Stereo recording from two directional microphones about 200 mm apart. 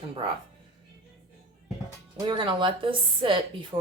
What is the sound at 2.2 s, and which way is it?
A woman's voice, 25° right (ahead or behind).